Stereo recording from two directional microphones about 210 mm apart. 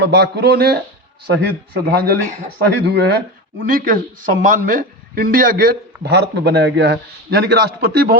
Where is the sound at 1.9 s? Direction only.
45° right (ahead or behind).